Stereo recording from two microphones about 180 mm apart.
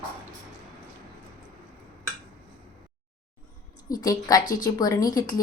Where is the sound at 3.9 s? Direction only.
20° left (ahead or behind).